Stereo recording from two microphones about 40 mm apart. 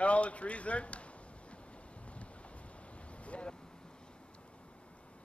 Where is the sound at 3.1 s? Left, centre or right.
Left.